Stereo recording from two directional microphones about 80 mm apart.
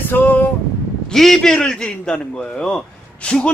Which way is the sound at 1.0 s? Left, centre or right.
Centre.